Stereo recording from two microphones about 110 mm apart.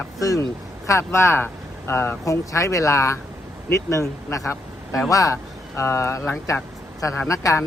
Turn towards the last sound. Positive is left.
turn(degrees=30)  # may be behind; listen again after turning